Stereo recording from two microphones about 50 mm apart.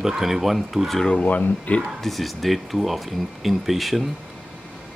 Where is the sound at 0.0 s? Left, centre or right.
Centre.